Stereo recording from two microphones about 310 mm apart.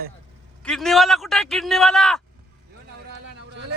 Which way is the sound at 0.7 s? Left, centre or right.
Centre.